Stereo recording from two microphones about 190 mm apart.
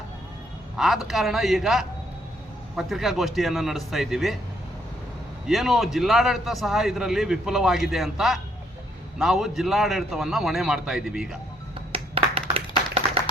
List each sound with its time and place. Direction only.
0.8 s a man's voice: centre (ahead or behind)
5.5 s a man's voice: centre (ahead or behind)
11.9 s clapping: 30° right (ahead or behind)